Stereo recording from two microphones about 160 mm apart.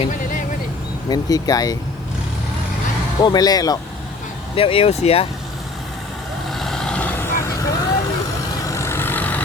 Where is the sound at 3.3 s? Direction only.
25° left (ahead or behind).